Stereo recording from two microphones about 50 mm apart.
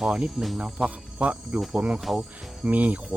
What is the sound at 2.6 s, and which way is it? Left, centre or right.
Speech, right.